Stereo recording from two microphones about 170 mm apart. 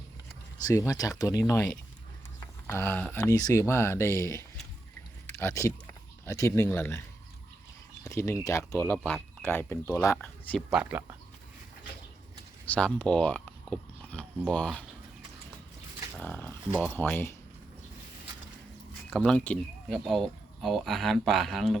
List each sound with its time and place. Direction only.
0.7 s speech: 20° left (ahead or behind)
2.6 s speech: 10° left (ahead or behind)
8.0 s speech: 15° left (ahead or behind)
10.7 s speech: 5° right (ahead or behind)
12.6 s speech: 10° left (ahead or behind)
16.1 s speech: 10° left (ahead or behind)
19.1 s speech: 5° left (ahead or behind)